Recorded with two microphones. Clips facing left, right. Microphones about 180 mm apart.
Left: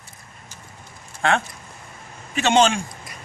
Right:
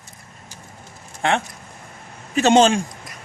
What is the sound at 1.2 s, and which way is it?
Speech, 20° right (ahead or behind).